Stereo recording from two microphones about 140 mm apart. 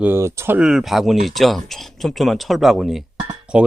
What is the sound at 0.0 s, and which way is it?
Speech, 15° right (ahead or behind).